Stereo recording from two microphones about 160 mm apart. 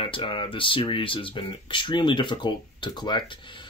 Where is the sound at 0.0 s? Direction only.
30° left (ahead or behind).